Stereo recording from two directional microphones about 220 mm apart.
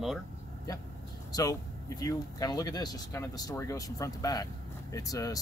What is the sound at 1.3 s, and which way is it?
Speech, 15° left (ahead or behind).